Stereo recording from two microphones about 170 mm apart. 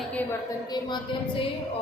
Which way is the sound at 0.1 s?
10° left (ahead or behind).